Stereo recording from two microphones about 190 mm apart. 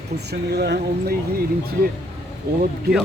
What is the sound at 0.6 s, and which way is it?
Speech, 60° right (ahead or behind).